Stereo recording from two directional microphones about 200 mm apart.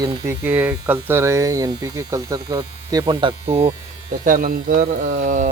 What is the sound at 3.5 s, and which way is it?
Speech, 30° right (ahead or behind).